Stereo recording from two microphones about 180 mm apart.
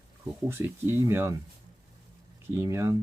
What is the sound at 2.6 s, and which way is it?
Speech, 15° right (ahead or behind).